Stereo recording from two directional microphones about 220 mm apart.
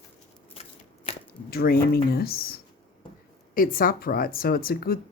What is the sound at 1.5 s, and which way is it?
Speech, 45° left (ahead or behind).